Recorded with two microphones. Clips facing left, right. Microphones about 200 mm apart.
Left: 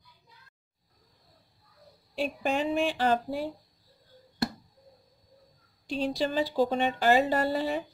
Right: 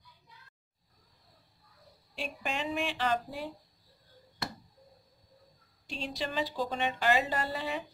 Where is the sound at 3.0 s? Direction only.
35° left (ahead or behind).